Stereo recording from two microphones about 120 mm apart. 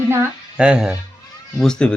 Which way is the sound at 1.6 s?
5° left (ahead or behind).